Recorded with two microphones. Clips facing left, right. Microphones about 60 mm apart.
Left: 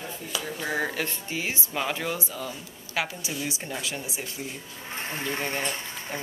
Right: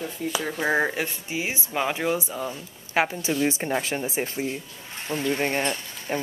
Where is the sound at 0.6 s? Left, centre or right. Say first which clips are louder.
Right 5 dB; right.